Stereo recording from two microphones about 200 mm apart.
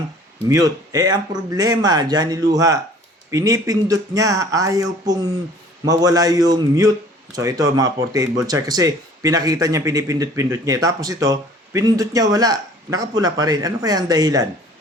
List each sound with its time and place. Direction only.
0.4 s speech: 15° right (ahead or behind)